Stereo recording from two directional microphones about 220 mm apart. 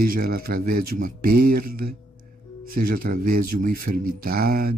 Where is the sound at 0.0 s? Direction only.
40° right (ahead or behind).